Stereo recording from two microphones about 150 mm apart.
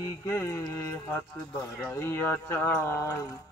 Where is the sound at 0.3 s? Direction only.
20° left (ahead or behind).